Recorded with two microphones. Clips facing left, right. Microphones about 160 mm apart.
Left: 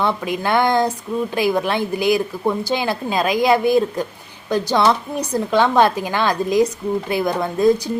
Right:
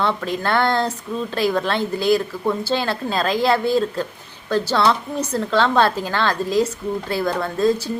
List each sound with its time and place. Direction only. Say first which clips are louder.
0.0 s a woman's voice: left 1 dB; 15° left (ahead or behind)